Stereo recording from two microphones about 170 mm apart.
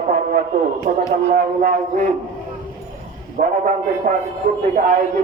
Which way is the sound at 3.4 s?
50° right (ahead or behind).